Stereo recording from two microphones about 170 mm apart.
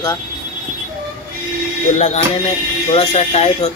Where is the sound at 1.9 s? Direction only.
40° left (ahead or behind).